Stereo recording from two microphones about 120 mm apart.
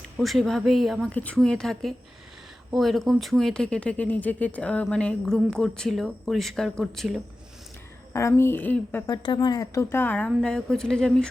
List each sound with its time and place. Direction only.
0.2 s speech: centre (ahead or behind)
1.1 s speech: 10° left (ahead or behind)
8.3 s speech: 20° left (ahead or behind)
9.0 s a woman's voice: 35° left (ahead or behind)
9.9 s speech: 15° left (ahead or behind)